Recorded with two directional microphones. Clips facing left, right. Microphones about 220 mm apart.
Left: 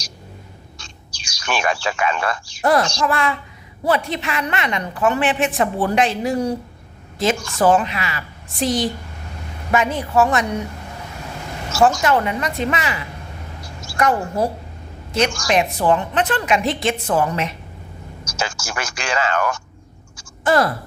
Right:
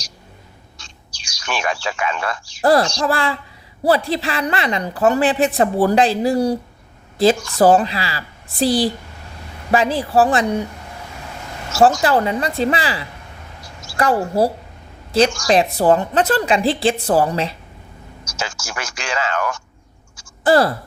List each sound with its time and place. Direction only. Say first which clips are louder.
0.8 s bird: left 3 dB; 55° left (ahead or behind)
2.6 s a woman's voice: right 3 dB; 35° right (ahead or behind)
11.8 s a woman's voice: right 2 dB; 30° right (ahead or behind)
18.3 s speech: left 2 dB; 55° left (ahead or behind)
20.4 s speech: right 3 dB; 30° right (ahead or behind)